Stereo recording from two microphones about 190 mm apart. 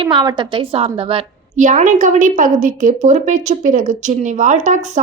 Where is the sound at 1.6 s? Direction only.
40° right (ahead or behind).